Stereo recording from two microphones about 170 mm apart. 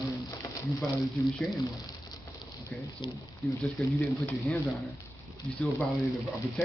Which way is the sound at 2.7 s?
5° left (ahead or behind).